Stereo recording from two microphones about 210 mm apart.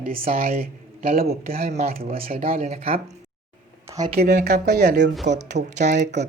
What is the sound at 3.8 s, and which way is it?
Speech, 15° right (ahead or behind).